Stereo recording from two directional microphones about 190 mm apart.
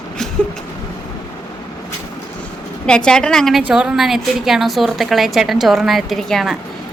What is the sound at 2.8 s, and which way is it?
A woman's voice, 5° left (ahead or behind).